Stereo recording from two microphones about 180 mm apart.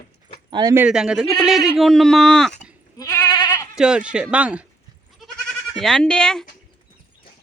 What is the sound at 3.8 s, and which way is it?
Speech, 5° right (ahead or behind).